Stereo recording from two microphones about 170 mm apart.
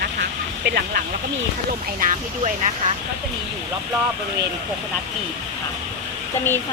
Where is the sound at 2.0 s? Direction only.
45° right (ahead or behind).